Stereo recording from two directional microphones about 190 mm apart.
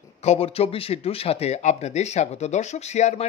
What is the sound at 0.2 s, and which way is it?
Speech, 35° left (ahead or behind).